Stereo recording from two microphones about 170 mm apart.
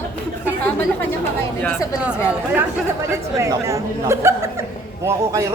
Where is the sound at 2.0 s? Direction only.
10° right (ahead or behind).